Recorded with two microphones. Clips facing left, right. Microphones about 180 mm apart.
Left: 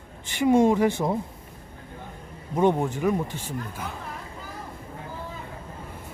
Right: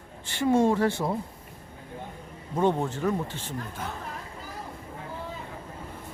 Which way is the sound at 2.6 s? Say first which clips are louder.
Left 3 dB; 15° left (ahead or behind).